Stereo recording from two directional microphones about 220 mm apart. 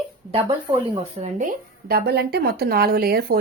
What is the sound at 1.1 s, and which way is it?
Speech, 35° right (ahead or behind).